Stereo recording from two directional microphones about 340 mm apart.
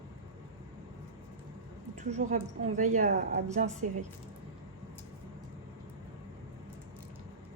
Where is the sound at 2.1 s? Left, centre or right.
Right.